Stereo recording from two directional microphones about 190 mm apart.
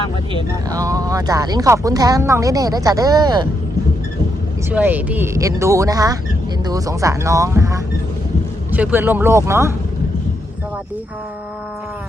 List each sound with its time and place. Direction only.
0.3 s speech: 20° right (ahead or behind)
4.7 s speech: 10° right (ahead or behind)